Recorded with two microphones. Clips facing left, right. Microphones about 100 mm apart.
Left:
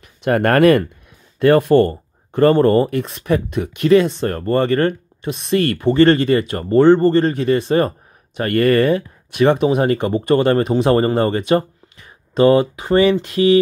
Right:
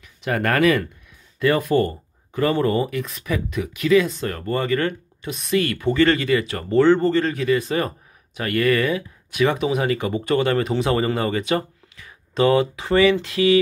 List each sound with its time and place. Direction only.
0.0 s speech: 55° left (ahead or behind)
3.0 s speech: 35° left (ahead or behind)
7.5 s speech: 30° left (ahead or behind)
8.4 s speech: 45° left (ahead or behind)
12.4 s speech: 30° left (ahead or behind)